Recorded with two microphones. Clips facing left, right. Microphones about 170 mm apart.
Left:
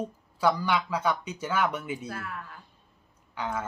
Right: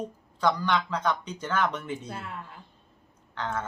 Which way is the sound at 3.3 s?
10° left (ahead or behind).